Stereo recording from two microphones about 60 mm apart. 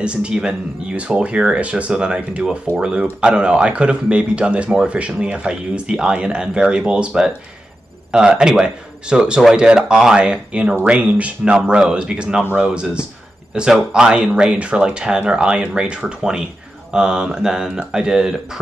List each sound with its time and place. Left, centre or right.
0.0 s speech: centre